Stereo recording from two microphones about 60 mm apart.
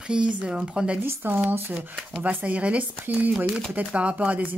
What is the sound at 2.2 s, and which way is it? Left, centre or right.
Speech, right.